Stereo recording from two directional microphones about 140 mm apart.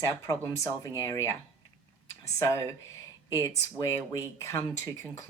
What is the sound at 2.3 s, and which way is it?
Speech, 20° left (ahead or behind).